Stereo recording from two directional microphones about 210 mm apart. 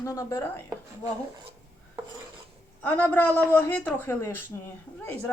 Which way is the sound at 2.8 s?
10° left (ahead or behind).